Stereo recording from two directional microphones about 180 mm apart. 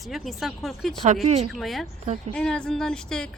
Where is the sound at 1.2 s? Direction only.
35° right (ahead or behind).